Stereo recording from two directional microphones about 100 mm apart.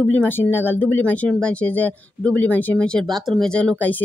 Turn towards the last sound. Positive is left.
turn(degrees=10)  # may be behind; listen again after turning